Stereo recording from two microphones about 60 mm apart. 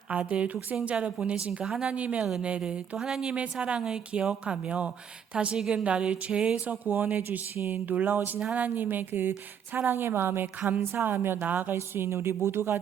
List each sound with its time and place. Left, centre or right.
0.1 s a woman's voice: right
6.8 s speech: right